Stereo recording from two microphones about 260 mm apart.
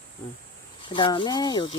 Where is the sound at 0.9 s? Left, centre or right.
Centre.